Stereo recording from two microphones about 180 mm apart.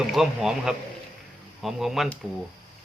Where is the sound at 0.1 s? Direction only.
Centre (ahead or behind).